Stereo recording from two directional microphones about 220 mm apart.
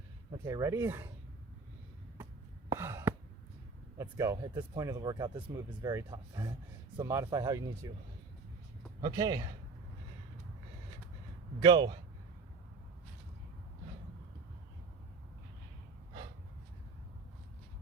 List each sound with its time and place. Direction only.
0.3 s speech: 15° right (ahead or behind)
2.6 s sigh: 10° right (ahead or behind)
3.9 s speech: 15° right (ahead or behind)
9.0 s speech: 15° right (ahead or behind)
11.6 s speech: 20° right (ahead or behind)